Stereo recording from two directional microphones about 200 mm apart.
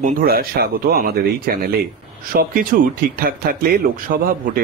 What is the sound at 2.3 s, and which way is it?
Speech, 45° right (ahead or behind).